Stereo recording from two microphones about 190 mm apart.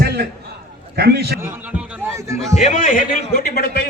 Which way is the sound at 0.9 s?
55° right (ahead or behind).